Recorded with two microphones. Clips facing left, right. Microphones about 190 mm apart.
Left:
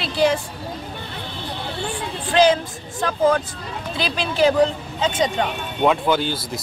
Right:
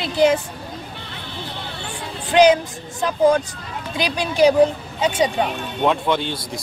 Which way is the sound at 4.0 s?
15° right (ahead or behind).